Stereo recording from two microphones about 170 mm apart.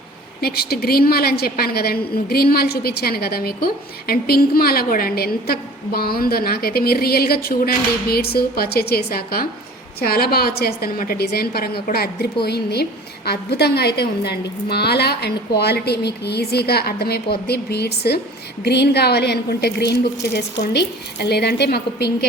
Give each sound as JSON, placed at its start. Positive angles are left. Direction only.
{"t": 0.4, "sound": "a woman's voice", "side_deg": 65}